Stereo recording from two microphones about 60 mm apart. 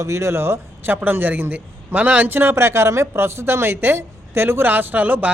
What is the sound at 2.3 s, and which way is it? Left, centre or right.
Speech, right.